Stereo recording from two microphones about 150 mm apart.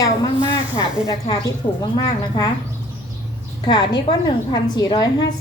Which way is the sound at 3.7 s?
30° left (ahead or behind).